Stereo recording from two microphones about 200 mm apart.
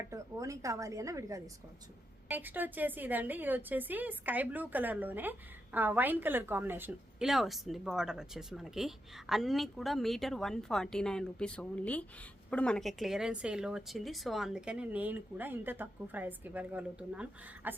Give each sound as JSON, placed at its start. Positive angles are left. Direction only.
{"t": 0.1, "sound": "a woman's voice", "side_deg": -15}